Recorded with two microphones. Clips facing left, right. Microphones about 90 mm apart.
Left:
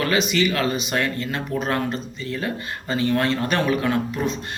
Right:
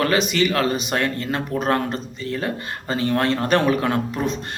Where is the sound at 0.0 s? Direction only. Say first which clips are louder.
Right 1 dB; 45° right (ahead or behind).